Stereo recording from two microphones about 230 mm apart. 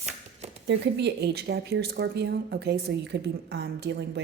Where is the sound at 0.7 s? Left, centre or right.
Right.